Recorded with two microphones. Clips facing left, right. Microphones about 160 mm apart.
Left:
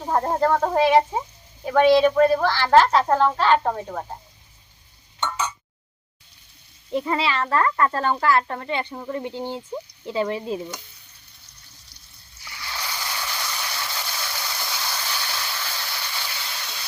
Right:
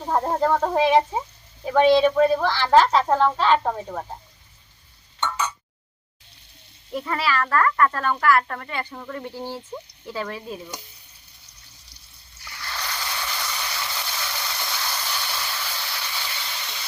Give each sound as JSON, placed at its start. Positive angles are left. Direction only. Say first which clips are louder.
{"t": 0.1, "sound": "speech", "louder": "left 1 dB", "side_deg": -5}
{"t": 6.9, "sound": "speech", "louder": "left 2 dB", "side_deg": 25}
{"t": 12.5, "sound": "a sound", "louder": "even", "side_deg": 5}